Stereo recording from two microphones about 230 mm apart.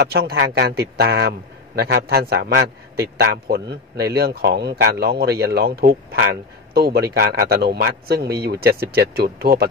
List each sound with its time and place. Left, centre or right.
0.0 s a man's voice: right